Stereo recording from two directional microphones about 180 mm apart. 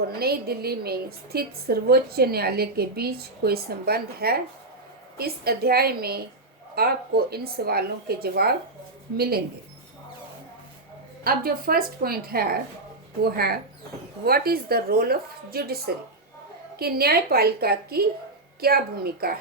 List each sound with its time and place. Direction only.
0.2 s a woman's voice: 60° right (ahead or behind)
11.2 s a woman's voice: 55° right (ahead or behind)